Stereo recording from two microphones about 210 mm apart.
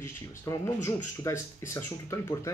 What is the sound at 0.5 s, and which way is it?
Speech, 15° left (ahead or behind).